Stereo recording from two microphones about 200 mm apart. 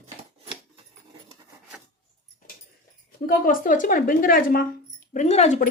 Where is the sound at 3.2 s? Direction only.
45° left (ahead or behind).